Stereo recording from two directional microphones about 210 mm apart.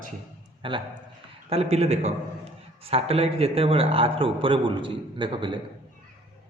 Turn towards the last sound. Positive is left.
turn(degrees=-25)  # may be behind; listen again after turning